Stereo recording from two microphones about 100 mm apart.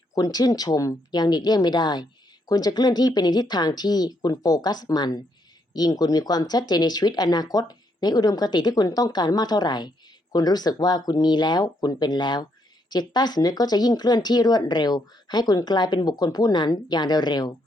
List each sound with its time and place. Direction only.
0.1 s speech: 40° left (ahead or behind)